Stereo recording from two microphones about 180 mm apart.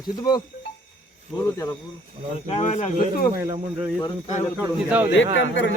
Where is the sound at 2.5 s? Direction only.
35° left (ahead or behind).